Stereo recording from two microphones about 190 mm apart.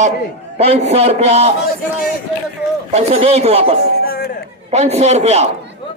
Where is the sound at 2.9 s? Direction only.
35° right (ahead or behind).